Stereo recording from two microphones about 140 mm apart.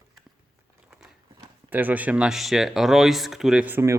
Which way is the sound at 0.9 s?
5° right (ahead or behind).